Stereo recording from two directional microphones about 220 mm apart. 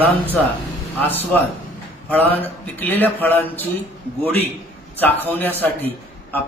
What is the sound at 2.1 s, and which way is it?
Speech, 10° left (ahead or behind).